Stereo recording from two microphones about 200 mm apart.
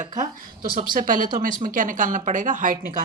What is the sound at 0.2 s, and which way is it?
Speech, 45° right (ahead or behind).